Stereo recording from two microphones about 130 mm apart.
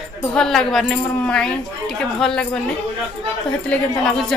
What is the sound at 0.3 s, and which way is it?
Speech, 5° left (ahead or behind).